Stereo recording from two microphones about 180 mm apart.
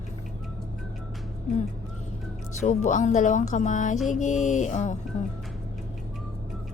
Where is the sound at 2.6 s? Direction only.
40° left (ahead or behind).